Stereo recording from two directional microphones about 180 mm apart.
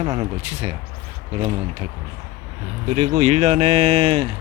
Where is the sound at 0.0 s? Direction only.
35° right (ahead or behind).